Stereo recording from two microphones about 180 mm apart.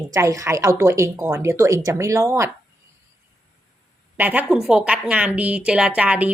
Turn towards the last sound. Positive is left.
turn(degrees=-10)  # may be behind; listen again after turning